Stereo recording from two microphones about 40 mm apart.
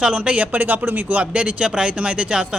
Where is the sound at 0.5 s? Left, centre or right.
Right.